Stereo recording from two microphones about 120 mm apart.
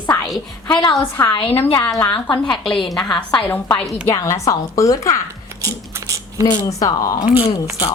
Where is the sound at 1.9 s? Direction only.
40° left (ahead or behind).